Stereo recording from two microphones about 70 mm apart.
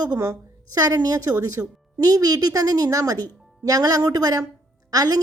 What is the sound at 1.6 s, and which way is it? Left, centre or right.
Speech, right.